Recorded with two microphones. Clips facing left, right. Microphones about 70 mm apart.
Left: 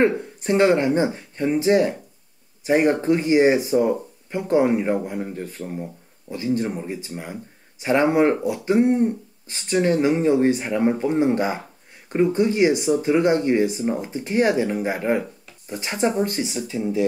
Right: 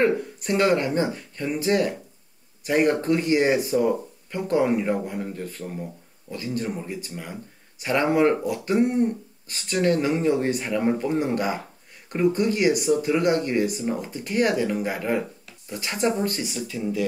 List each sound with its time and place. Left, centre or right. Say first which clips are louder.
0.0 s speech: left 2 dB; left